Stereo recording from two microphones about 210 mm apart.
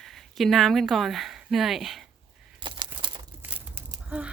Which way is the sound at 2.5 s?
25° right (ahead or behind).